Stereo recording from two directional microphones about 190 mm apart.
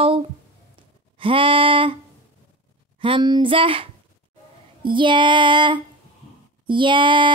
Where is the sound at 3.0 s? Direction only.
25° right (ahead or behind).